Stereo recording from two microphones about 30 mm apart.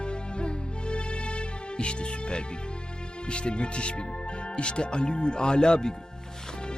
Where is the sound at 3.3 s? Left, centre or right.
Left.